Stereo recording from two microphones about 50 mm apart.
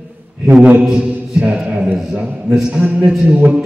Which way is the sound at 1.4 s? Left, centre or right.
Centre.